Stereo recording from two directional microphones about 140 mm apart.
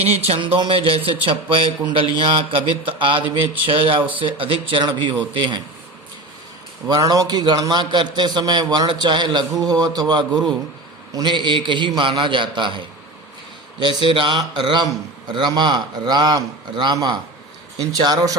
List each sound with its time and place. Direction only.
0.0 s a man's voice: 45° right (ahead or behind)
6.8 s a man's voice: 25° right (ahead or behind)
13.8 s a man's voice: 35° right (ahead or behind)